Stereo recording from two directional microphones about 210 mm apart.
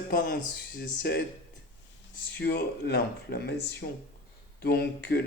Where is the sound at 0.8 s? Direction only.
50° left (ahead or behind).